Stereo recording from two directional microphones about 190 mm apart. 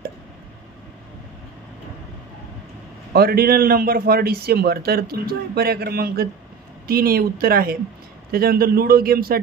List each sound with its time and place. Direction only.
3.1 s a man's voice: 55° right (ahead or behind)